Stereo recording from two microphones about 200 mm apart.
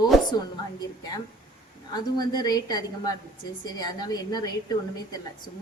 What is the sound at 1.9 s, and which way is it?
A woman's voice, 20° left (ahead or behind).